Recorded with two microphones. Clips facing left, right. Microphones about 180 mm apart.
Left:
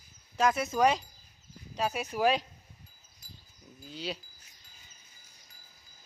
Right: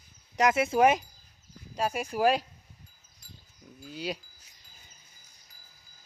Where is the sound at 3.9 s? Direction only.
10° right (ahead or behind).